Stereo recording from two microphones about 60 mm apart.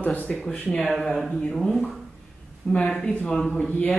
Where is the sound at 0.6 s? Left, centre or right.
Left.